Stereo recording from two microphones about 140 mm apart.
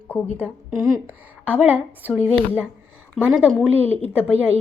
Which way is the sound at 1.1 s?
10° right (ahead or behind).